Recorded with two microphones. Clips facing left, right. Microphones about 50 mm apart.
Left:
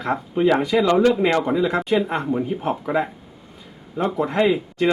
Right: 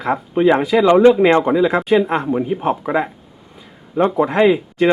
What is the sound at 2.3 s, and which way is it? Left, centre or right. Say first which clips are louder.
Speech: right 5 dB; right.